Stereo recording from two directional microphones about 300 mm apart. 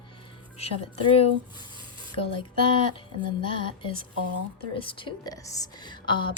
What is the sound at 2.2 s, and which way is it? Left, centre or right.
A woman's voice, centre.